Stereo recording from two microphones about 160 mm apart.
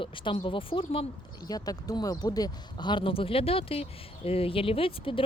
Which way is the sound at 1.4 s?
25° left (ahead or behind).